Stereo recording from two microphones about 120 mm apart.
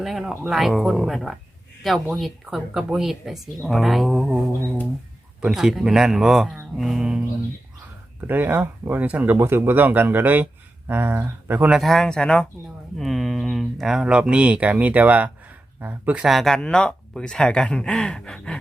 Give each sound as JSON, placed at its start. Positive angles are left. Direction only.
{"t": 0.0, "sound": "speech", "side_deg": 0}
{"t": 8.3, "sound": "speech", "side_deg": -15}
{"t": 11.8, "sound": "speech", "side_deg": 0}
{"t": 16.2, "sound": "speech", "side_deg": 0}